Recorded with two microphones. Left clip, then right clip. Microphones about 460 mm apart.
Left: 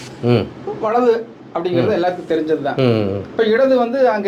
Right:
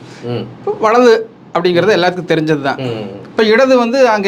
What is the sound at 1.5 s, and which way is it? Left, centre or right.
A man's voice, right.